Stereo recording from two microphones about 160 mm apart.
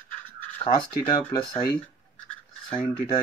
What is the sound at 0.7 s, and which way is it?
Speech, 30° left (ahead or behind).